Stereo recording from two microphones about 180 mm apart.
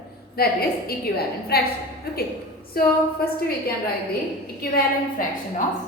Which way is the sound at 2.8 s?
55° left (ahead or behind).